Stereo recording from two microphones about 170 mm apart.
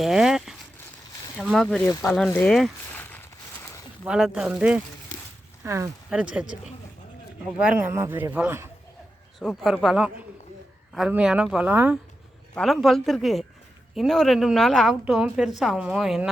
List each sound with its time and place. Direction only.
0.0 s a woman's voice: centre (ahead or behind)
1.8 s speech: 20° left (ahead or behind)
2.0 s a woman's voice: centre (ahead or behind)
2.3 s a sound: 5° left (ahead or behind)
4.0 s a woman's voice: 5° right (ahead or behind)
5.6 s a man's voice: 15° right (ahead or behind)
6.1 s a man's voice: 5° right (ahead or behind)
7.6 s a man's voice: 10° right (ahead or behind)
9.4 s a woman's voice: centre (ahead or behind)
12.5 s a woman's voice: centre (ahead or behind)